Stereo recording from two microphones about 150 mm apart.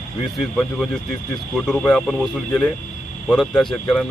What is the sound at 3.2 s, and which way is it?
Speech, centre (ahead or behind).